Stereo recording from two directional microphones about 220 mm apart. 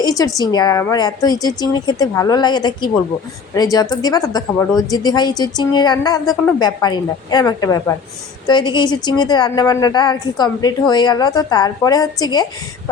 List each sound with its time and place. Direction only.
0.0 s a woman's voice: 15° left (ahead or behind)